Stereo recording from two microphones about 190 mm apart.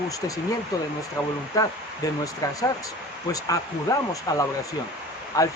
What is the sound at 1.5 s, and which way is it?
Speech, 20° left (ahead or behind).